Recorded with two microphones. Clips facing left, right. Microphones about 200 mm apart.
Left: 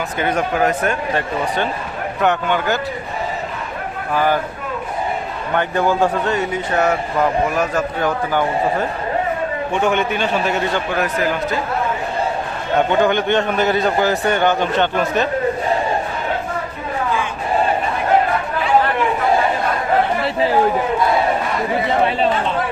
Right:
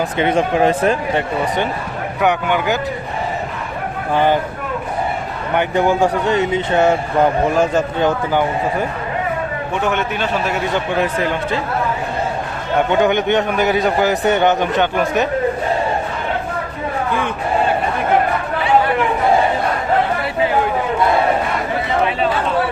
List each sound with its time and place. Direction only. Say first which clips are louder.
0.2 s speech: right 3 dB; 25° right (ahead or behind)
2.2 s a man's voice: right 1 dB; 15° right (ahead or behind)
4.1 s speech: right 2 dB; 25° right (ahead or behind)
5.5 s speech: right 2 dB; 20° right (ahead or behind)
9.8 s a man's voice: left 2 dB; centre (ahead or behind)
10.9 s speech: right 2 dB; 25° right (ahead or behind)
12.9 s a man's voice: right 2 dB; 15° right (ahead or behind)